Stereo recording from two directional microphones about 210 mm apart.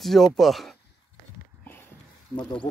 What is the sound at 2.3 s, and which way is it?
Speech, 20° left (ahead or behind).